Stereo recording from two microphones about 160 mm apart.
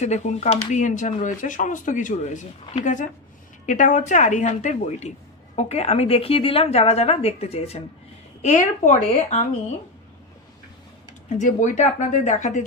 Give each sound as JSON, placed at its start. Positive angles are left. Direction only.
{"t": 0.0, "sound": "a woman's voice", "side_deg": 45}
{"t": 11.2, "sound": "speech", "side_deg": 50}